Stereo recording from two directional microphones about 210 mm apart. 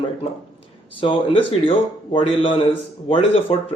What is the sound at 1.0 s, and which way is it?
A man's voice, 25° left (ahead or behind).